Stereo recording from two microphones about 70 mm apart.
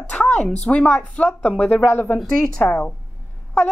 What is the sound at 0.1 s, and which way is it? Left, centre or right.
Speech, centre.